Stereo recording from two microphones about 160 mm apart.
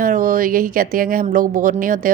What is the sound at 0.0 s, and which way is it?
A woman's voice, 60° right (ahead or behind).